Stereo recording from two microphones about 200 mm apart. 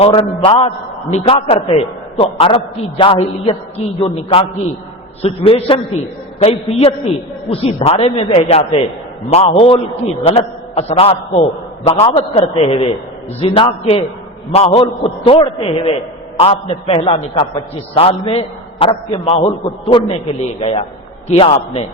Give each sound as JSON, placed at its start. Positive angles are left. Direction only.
{"t": 0.0, "sound": "a man's voice", "side_deg": 30}